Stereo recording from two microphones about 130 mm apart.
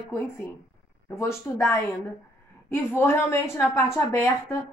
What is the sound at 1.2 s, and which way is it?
A woman's voice, 20° left (ahead or behind).